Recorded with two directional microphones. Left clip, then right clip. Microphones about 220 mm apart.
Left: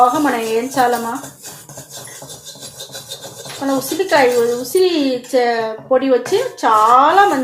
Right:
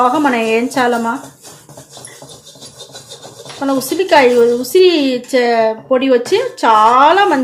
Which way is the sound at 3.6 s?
50° right (ahead or behind).